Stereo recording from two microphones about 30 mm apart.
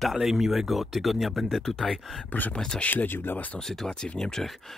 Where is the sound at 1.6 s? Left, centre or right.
Centre.